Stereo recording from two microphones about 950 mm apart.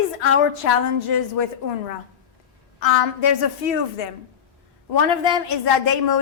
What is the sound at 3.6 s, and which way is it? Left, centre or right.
Speech, left.